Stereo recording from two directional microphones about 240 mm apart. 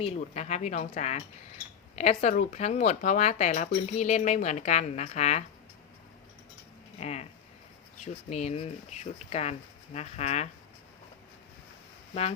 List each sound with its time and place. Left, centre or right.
0.0 s speech: left
7.0 s speech: left